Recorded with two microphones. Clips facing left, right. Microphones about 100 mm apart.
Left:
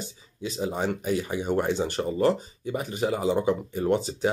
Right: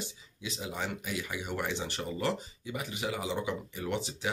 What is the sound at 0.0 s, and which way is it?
Speech, 40° left (ahead or behind).